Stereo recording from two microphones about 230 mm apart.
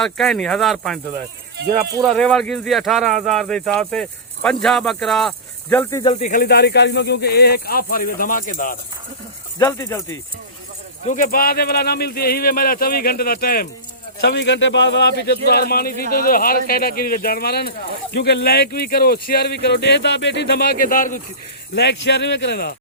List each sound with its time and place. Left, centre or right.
0.0 s speech: centre
1.5 s speech: right
2.0 s speech: centre
6.2 s speech: left
9.6 s speech: centre
11.0 s speech: left
21.8 s speech: left